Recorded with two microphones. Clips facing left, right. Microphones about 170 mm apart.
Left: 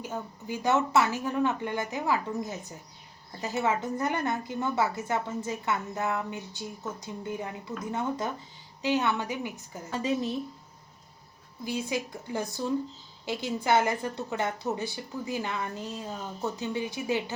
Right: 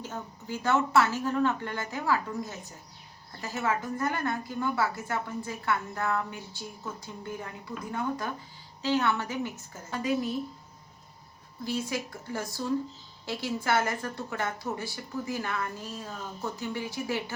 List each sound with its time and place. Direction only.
0.0 s a woman's voice: 15° left (ahead or behind)
9.9 s a woman's voice: 25° left (ahead or behind)
11.6 s a woman's voice: 15° left (ahead or behind)